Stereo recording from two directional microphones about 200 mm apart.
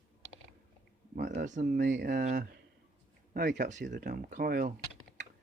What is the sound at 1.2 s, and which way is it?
Speech, 55° right (ahead or behind).